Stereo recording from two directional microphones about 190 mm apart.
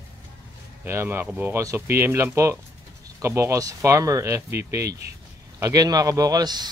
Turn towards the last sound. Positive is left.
turn(degrees=-20)  # may be behind; listen again after turning